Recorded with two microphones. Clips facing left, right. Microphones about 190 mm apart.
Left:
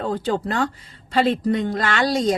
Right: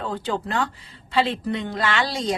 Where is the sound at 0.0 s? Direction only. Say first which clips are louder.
Left 4 dB; 45° left (ahead or behind).